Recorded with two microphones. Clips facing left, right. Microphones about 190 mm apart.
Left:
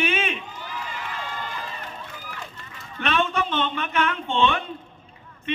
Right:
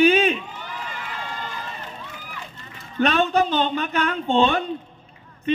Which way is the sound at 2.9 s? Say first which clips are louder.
Right 5 dB; 40° right (ahead or behind).